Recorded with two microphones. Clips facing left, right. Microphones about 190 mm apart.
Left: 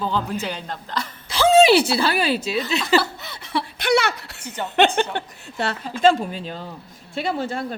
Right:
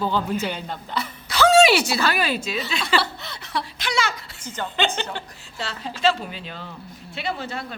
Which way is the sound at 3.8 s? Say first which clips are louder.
Left 8 dB; 60° left (ahead or behind).